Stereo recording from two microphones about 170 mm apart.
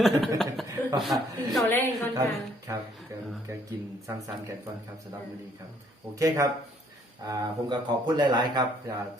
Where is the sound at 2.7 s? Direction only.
20° right (ahead or behind).